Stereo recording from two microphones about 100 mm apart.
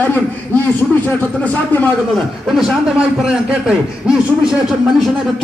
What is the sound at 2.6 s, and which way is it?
A man's voice, 5° right (ahead or behind).